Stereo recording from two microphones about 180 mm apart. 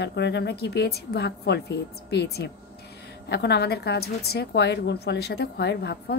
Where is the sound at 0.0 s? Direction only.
70° left (ahead or behind).